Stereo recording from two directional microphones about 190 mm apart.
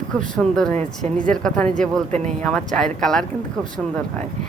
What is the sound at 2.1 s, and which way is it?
Speech, 35° right (ahead or behind).